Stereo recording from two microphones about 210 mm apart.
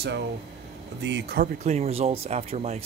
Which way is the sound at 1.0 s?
50° right (ahead or behind).